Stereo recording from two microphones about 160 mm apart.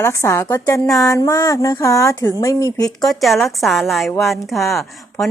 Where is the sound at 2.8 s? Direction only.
Centre (ahead or behind).